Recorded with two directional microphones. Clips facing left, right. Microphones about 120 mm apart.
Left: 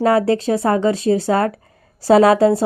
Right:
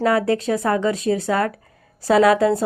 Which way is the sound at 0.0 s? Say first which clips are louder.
Left 3 dB; 30° left (ahead or behind).